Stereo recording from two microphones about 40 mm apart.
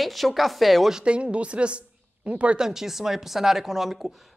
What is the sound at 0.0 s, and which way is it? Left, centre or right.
Speech, centre.